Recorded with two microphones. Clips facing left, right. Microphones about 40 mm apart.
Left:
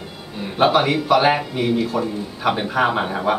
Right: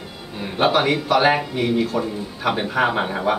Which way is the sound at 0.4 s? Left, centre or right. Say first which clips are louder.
Left 2 dB; centre.